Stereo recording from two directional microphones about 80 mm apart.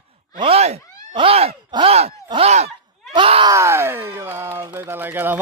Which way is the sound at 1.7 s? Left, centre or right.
Right.